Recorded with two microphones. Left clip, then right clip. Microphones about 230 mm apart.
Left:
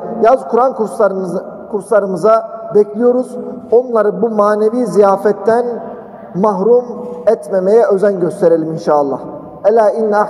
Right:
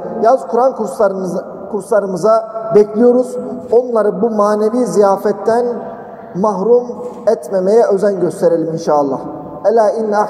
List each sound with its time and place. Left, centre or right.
0.2 s speech: left